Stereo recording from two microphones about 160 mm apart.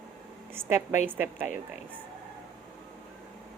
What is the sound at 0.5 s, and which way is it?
Speech, 15° right (ahead or behind).